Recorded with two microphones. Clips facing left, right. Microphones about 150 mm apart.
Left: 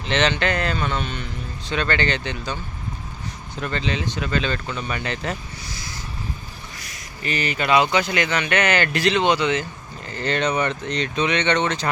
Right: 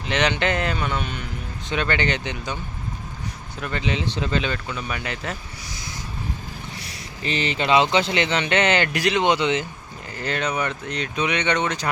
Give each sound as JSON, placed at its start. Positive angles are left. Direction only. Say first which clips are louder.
{"t": 0.1, "sound": "speech", "louder": "left 1 dB", "side_deg": -15}
{"t": 3.6, "sound": "speech", "louder": "even", "side_deg": -10}
{"t": 4.5, "sound": "speech", "louder": "left 2 dB", "side_deg": -5}
{"t": 6.7, "sound": "speech", "louder": "right 2 dB", "side_deg": -30}
{"t": 10.1, "sound": "speech", "louder": "left 3 dB", "side_deg": -5}